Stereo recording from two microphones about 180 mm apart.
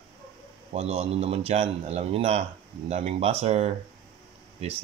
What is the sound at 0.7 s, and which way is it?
A man's voice, 35° right (ahead or behind).